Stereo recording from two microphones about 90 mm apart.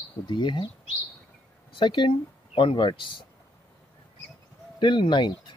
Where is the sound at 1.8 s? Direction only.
65° left (ahead or behind).